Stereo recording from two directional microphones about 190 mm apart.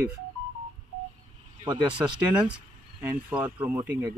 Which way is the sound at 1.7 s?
25° right (ahead or behind).